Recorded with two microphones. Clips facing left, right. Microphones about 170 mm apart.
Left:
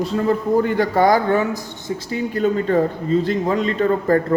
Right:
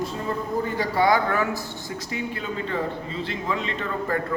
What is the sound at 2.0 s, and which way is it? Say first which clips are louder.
A man's voice: left 11 dB; 35° left (ahead or behind).